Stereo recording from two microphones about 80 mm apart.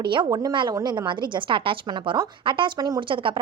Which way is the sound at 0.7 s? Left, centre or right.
Right.